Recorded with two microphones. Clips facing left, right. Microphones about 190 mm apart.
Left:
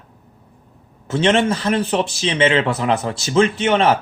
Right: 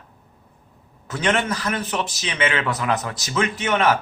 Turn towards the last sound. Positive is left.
turn(degrees=30)  # may be behind; listen again after turning